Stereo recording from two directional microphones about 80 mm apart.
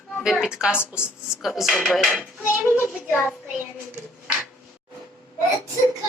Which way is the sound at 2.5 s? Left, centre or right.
Left.